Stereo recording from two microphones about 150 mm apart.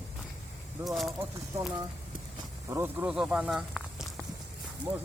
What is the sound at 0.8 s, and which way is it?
Speech, centre (ahead or behind).